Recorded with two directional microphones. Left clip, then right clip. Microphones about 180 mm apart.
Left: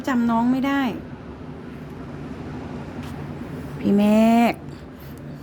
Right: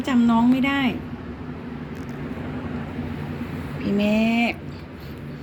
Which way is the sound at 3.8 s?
45° left (ahead or behind).